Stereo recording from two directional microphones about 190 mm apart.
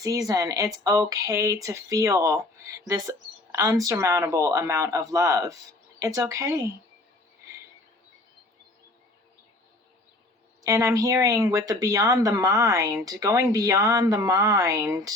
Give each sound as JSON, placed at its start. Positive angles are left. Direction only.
{"t": 0.0, "sound": "speech", "side_deg": -15}
{"t": 10.6, "sound": "speech", "side_deg": -15}